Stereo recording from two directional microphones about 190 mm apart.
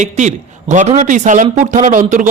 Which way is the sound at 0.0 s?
40° right (ahead or behind).